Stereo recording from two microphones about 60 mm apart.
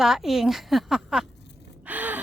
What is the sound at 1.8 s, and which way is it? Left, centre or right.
Gasp, right.